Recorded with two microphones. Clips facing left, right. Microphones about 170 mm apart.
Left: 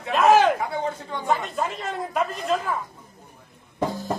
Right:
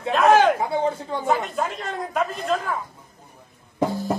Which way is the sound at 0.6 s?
30° right (ahead or behind).